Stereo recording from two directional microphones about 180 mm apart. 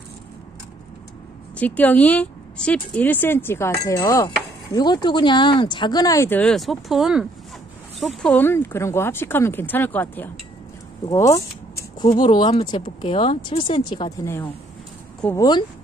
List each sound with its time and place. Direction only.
1.6 s speech: 10° left (ahead or behind)